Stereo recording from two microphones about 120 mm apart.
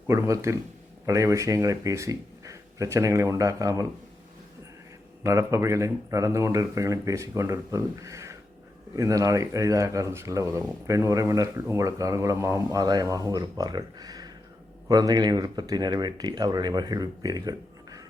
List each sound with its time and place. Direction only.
0.1 s speech: 25° right (ahead or behind)
5.2 s speech: 25° right (ahead or behind)